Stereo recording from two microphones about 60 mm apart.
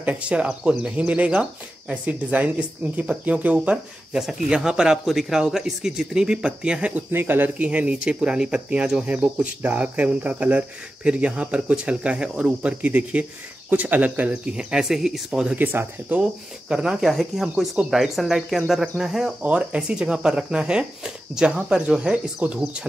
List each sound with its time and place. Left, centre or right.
0.0 s speech: right
4.1 s speech: centre
7.1 s speech: right
14.6 s speech: centre
15.5 s speech: right
16.2 s speech: centre
19.4 s speech: centre